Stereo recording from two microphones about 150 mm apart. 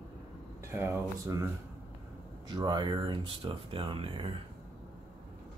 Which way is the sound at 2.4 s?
30° right (ahead or behind).